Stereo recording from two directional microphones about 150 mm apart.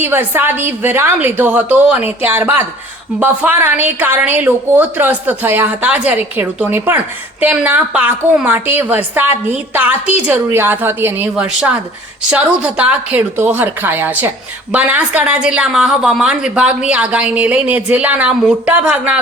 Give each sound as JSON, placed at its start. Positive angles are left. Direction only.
{"t": 0.0, "sound": "a woman's voice", "side_deg": -15}